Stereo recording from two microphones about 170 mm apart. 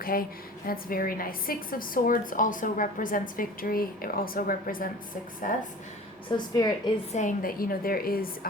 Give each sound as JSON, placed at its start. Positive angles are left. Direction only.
{"t": 0.0, "sound": "a woman's voice", "side_deg": 60}
{"t": 6.3, "sound": "a woman's voice", "side_deg": 25}
{"t": 7.1, "sound": "a woman's voice", "side_deg": 50}